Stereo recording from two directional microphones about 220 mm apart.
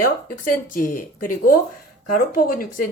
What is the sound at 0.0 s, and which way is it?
A woman's voice, 40° left (ahead or behind).